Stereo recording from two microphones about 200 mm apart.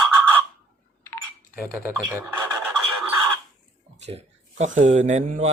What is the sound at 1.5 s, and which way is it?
Speech, 10° right (ahead or behind).